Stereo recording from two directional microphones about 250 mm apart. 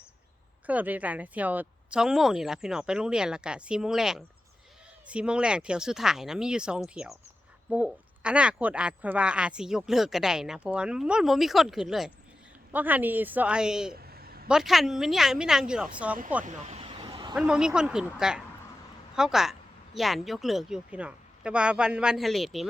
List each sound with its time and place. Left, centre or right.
0.7 s speech: centre
14.1 s a sound: right
14.4 s speech: centre
16.4 s vehicle: right
17.3 s speech: centre